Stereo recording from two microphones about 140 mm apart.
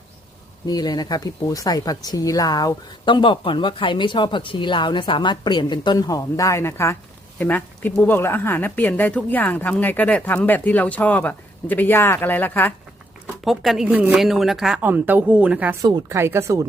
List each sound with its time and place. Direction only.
0.7 s speech: 30° left (ahead or behind); by 12.7 s 15° left (ahead or behind)
13.4 s a woman's voice: centre (ahead or behind)
15.8 s speech: 25° right (ahead or behind)